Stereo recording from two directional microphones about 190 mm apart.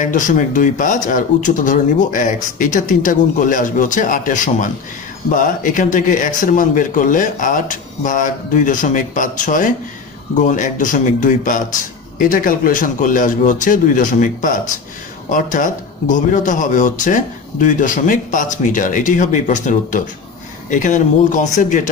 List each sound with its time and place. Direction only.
0.0 s speech: 45° left (ahead or behind)